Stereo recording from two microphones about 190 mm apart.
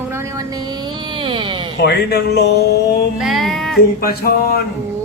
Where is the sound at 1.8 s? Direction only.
60° left (ahead or behind).